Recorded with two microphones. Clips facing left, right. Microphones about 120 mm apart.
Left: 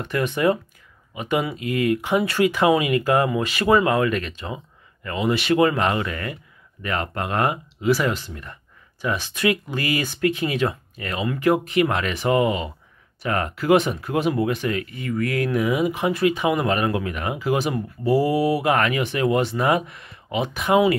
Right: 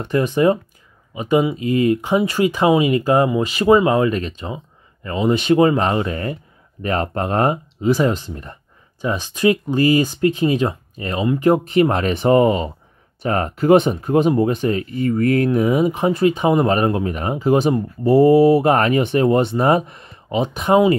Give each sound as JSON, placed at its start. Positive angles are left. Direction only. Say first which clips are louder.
{"t": 0.0, "sound": "speech", "louder": "right 5 dB", "side_deg": -35}
{"t": 1.1, "sound": "speech", "louder": "right 6 dB", "side_deg": -20}
{"t": 2.0, "sound": "speech", "louder": "right 3 dB", "side_deg": -20}
{"t": 7.9, "sound": "speech", "louder": "right 4 dB", "side_deg": -20}